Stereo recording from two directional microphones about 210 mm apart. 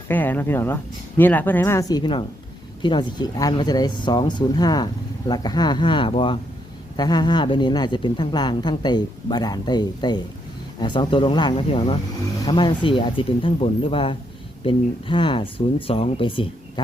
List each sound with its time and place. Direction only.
0.1 s speech: 10° left (ahead or behind); by 16.8 s 25° left (ahead or behind)